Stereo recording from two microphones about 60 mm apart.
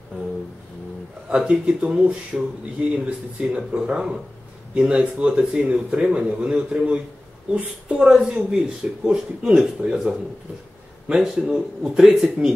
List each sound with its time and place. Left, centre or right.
1.3 s speech: centre